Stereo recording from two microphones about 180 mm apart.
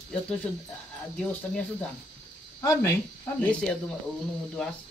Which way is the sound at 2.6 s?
15° left (ahead or behind).